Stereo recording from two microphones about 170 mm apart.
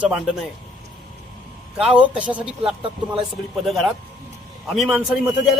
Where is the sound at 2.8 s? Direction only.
30° right (ahead or behind).